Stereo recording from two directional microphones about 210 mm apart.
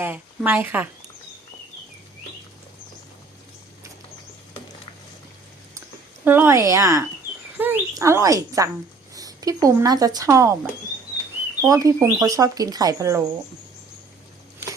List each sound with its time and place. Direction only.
0.0 s speech: 10° right (ahead or behind)
6.2 s speech: 10° right (ahead or behind)
11.6 s speech: 15° right (ahead or behind)